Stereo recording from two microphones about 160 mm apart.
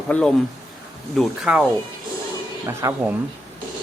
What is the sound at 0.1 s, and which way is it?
Speech, 5° left (ahead or behind).